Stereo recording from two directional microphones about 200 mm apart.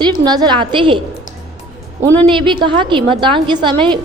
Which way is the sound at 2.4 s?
25° right (ahead or behind).